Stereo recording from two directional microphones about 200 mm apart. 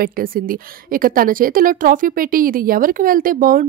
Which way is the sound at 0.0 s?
45° right (ahead or behind).